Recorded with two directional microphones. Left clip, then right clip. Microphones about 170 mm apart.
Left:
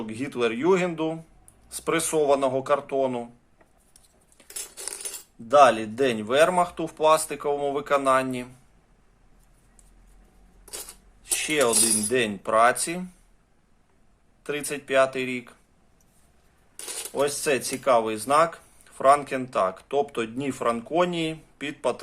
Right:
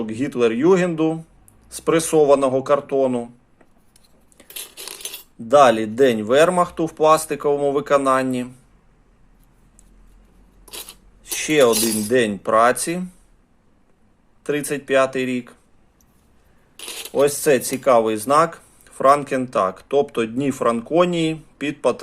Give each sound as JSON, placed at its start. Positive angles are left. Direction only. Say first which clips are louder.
{"t": 0.0, "sound": "speech", "louder": "right 7 dB", "side_deg": -20}
{"t": 4.5, "sound": "cutlery", "louder": "right 4 dB", "side_deg": 10}
{"t": 5.5, "sound": "speech", "louder": "right 4 dB", "side_deg": -25}
{"t": 11.3, "sound": "speech", "louder": "right 7 dB", "side_deg": -20}
{"t": 14.4, "sound": "speech", "louder": "right 7 dB", "side_deg": -20}
{"t": 17.2, "sound": "speech", "louder": "right 8 dB", "side_deg": -25}